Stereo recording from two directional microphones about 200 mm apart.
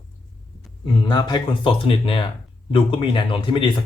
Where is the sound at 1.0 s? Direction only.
20° left (ahead or behind).